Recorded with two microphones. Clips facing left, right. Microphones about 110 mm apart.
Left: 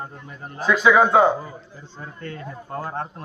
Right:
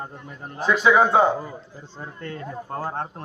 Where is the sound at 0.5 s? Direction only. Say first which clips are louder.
Left 1 dB; 25° right (ahead or behind).